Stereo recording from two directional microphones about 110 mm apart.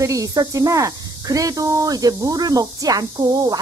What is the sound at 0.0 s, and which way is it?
Speech, 30° right (ahead or behind).